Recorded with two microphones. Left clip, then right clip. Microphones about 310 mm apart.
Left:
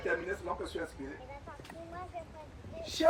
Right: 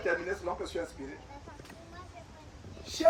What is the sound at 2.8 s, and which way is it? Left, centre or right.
Speech, centre.